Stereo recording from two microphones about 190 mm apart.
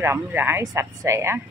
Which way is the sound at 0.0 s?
15° right (ahead or behind).